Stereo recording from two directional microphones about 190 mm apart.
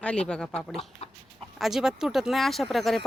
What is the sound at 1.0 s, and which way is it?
Chicken, 35° left (ahead or behind).